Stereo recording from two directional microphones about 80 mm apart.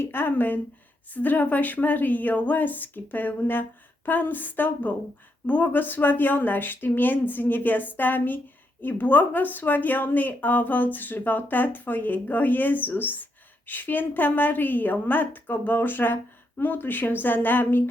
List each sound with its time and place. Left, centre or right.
0.0 s speech: left